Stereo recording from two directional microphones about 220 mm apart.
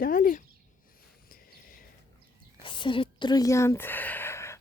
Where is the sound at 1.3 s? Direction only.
40° left (ahead or behind).